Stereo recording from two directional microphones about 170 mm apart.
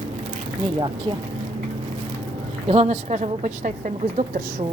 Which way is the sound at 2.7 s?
40° right (ahead or behind).